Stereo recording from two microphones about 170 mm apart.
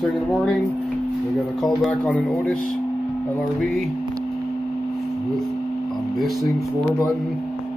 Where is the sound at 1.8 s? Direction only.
5° left (ahead or behind).